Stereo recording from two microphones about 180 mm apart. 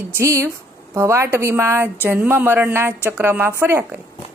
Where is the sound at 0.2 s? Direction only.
15° right (ahead or behind).